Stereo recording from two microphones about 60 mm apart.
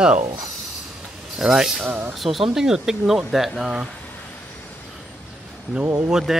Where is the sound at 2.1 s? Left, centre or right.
Centre.